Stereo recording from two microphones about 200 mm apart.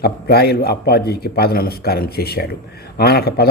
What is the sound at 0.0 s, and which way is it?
A man's voice, 50° left (ahead or behind).